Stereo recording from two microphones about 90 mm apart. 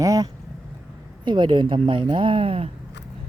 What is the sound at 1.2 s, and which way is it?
A woman's voice, 60° right (ahead or behind).